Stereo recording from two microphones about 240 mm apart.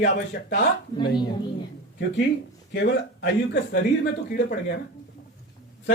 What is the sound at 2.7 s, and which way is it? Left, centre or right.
Speech, left.